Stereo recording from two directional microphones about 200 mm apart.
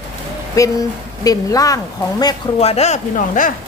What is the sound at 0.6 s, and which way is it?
A woman's voice, 15° left (ahead or behind).